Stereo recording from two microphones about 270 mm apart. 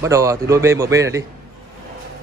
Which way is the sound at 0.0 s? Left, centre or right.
Centre.